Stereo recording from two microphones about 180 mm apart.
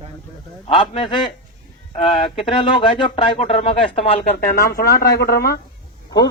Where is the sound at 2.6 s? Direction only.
30° left (ahead or behind).